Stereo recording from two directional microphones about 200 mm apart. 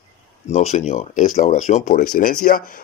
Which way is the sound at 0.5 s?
35° left (ahead or behind).